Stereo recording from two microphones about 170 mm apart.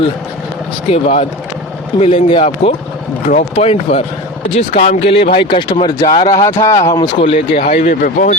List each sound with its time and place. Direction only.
0.9 s speech: 40° left (ahead or behind)
7.2 s speech: 35° left (ahead or behind); by 8.4 s 55° left (ahead or behind)